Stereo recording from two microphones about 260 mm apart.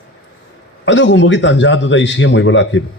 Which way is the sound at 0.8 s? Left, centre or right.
Left.